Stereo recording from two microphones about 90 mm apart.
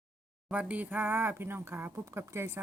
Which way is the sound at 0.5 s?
15° right (ahead or behind).